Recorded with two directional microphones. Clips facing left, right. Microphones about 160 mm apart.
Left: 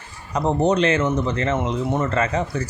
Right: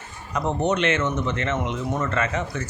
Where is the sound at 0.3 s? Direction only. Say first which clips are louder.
Left 4 dB; 35° left (ahead or behind).